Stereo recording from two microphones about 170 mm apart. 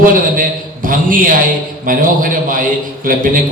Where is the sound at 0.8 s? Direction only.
55° right (ahead or behind).